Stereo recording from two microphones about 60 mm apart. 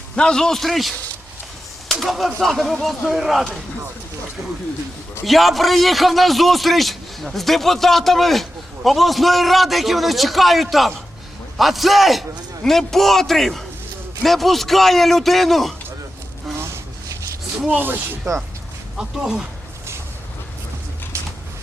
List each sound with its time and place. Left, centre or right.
0.2 s a man's voice: centre
5.2 s a man's voice: centre
16.6 s a sound: right
17.7 s speech: right
18.9 s speech: centre